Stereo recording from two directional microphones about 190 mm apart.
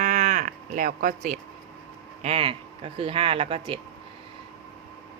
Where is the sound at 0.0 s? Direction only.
40° right (ahead or behind).